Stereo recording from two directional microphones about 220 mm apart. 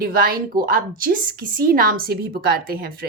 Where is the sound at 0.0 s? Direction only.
40° right (ahead or behind).